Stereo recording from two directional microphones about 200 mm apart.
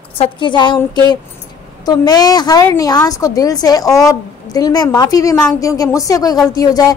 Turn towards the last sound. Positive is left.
turn(degrees=20)  # may be behind; listen again after turning